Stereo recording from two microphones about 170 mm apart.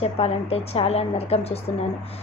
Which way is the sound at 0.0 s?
35° left (ahead or behind).